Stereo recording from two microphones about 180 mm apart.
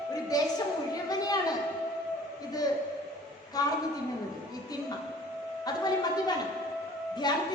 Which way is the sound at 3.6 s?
20° left (ahead or behind).